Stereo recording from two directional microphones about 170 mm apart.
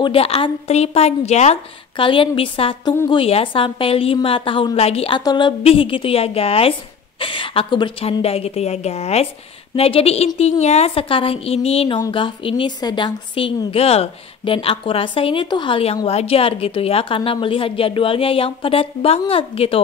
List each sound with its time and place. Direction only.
0.0 s a woman's voice: 35° left (ahead or behind)